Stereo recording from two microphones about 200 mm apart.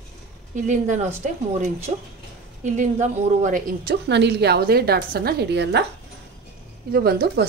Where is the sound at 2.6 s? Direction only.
35° right (ahead or behind); by 5.9 s 60° right (ahead or behind).